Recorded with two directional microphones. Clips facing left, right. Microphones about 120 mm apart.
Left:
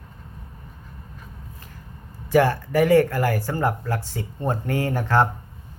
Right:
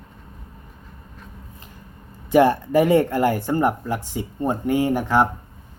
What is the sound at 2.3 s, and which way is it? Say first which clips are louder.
Speech: right 3 dB; 20° right (ahead or behind).